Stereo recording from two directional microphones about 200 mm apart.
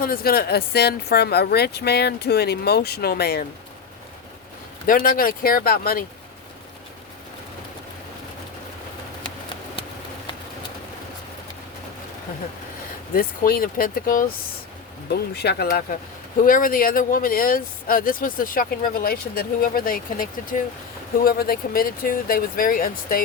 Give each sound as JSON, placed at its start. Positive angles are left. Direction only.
{"t": 0.0, "sound": "speech", "side_deg": 45}
{"t": 4.9, "sound": "speech", "side_deg": 45}
{"t": 13.1, "sound": "speech", "side_deg": 45}